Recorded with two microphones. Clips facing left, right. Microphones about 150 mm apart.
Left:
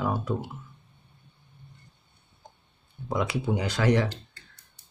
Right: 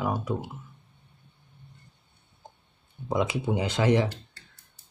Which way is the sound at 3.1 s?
20° right (ahead or behind).